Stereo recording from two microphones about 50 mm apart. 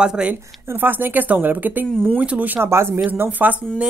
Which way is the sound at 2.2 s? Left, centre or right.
Right.